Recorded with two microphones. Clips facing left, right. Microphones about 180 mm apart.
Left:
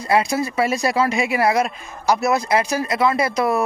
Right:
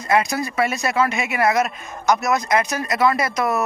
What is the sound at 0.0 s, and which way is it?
Speech, 30° left (ahead or behind).